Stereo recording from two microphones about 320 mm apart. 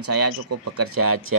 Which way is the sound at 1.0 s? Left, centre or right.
Right.